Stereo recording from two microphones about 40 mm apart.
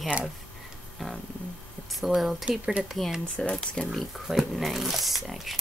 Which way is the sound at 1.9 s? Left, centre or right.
Centre.